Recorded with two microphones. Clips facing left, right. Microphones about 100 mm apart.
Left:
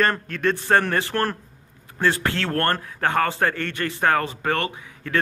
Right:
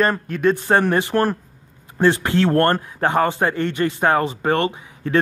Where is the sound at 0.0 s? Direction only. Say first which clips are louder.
Right 4 dB; 10° right (ahead or behind).